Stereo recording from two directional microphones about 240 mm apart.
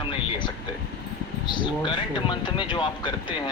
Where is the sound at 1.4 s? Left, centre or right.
Centre.